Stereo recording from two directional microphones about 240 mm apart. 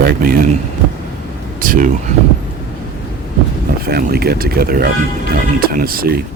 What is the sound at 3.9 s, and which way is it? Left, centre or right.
Speech, right.